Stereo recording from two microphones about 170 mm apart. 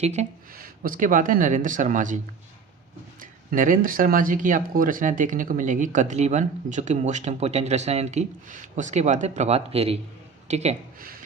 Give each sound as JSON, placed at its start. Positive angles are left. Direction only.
{"t": 0.0, "sound": "speech", "side_deg": -40}
{"t": 0.5, "sound": "speech", "side_deg": -55}